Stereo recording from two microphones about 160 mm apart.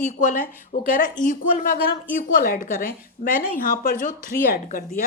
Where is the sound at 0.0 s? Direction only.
55° left (ahead or behind).